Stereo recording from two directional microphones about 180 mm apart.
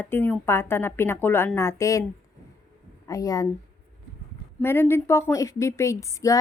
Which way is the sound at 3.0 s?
20° left (ahead or behind).